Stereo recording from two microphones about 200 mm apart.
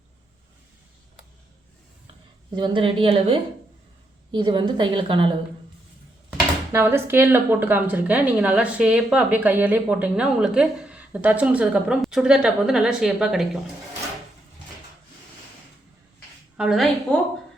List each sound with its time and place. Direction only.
2.6 s a woman's voice: 25° right (ahead or behind)
6.7 s a woman's voice: 10° right (ahead or behind)
16.6 s a woman's voice: centre (ahead or behind)